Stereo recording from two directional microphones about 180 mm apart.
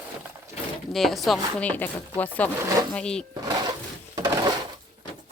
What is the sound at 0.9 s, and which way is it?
Speech, centre (ahead or behind).